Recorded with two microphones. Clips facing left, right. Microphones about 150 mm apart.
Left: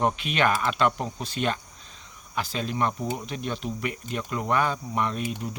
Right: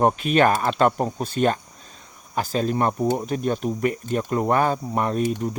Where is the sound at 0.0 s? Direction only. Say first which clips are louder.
Right 6 dB; 45° right (ahead or behind).